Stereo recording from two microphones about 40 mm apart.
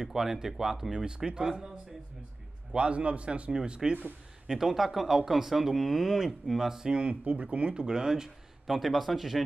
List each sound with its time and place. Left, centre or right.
0.0 s speech: centre
2.7 s speech: right
4.5 s speech: centre
6.7 s speech: centre